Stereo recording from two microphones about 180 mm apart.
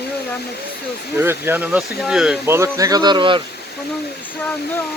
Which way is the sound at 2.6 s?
20° right (ahead or behind).